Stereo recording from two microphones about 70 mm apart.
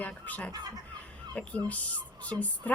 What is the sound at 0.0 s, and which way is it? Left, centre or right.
Speech, left.